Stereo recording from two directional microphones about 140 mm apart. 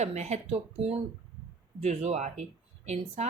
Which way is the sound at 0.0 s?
55° right (ahead or behind).